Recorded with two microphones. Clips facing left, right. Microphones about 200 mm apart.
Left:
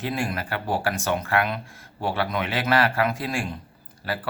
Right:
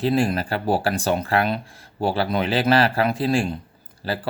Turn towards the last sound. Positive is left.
turn(degrees=-30)  # may be behind; listen again after turning